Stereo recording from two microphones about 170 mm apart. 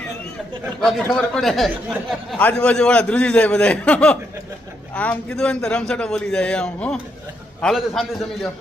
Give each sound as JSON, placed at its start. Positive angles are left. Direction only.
{"t": 0.8, "sound": "a man's voice", "side_deg": 0}